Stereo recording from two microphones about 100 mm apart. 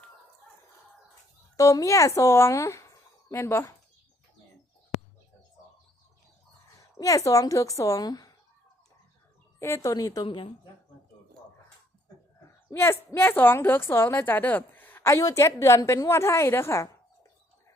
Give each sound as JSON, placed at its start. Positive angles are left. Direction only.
{"t": 1.5, "sound": "a woman's voice", "side_deg": 35}
{"t": 7.0, "sound": "a woman's voice", "side_deg": 35}
{"t": 9.6, "sound": "a woman's voice", "side_deg": 30}
{"t": 10.2, "sound": "speech", "side_deg": 60}
{"t": 12.7, "sound": "a woman's voice", "side_deg": 25}